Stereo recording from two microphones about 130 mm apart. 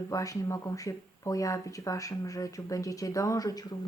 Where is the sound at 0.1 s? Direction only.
25° left (ahead or behind).